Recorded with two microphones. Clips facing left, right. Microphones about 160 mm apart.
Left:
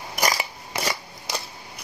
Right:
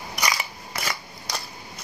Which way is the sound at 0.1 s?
45° left (ahead or behind).